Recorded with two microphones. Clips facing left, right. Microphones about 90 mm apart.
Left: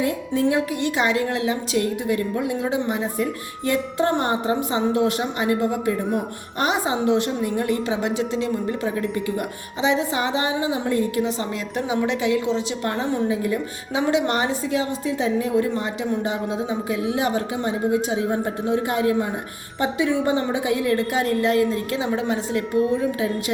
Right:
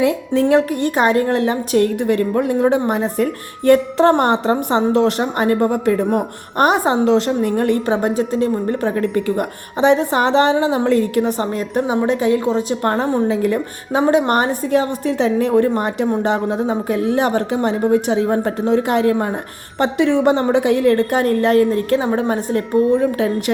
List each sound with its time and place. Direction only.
0.0 s a woman's voice: 70° right (ahead or behind); by 13.2 s 45° right (ahead or behind)
13.2 s a woman's voice: 65° right (ahead or behind)
14.0 s a woman's voice: 45° right (ahead or behind)